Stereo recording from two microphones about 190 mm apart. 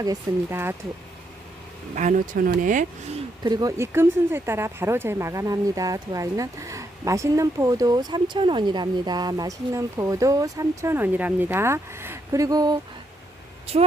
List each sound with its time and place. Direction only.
0.0 s speech: 15° right (ahead or behind)
2.0 s speech: 40° right (ahead or behind)
3.4 s speech: 20° right (ahead or behind)
13.7 s a woman's voice: 30° right (ahead or behind)